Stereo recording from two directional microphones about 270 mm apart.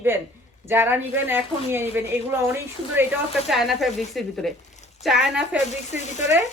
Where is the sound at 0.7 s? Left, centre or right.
Centre.